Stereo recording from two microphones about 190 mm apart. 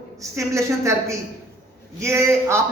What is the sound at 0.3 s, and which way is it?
A man's voice, 15° right (ahead or behind).